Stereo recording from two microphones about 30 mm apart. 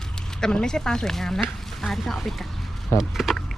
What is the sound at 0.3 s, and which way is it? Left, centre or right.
Speech, left.